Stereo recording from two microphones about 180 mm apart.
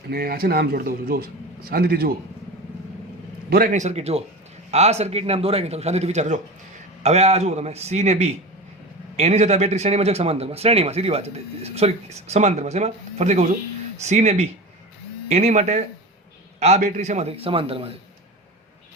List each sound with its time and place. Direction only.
0.1 s speech: 55° right (ahead or behind)
3.5 s a man's voice: 50° right (ahead or behind); by 17.9 s 30° right (ahead or behind)